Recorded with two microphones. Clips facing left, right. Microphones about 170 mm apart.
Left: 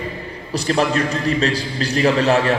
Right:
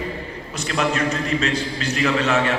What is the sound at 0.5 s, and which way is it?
A man's voice, 35° left (ahead or behind).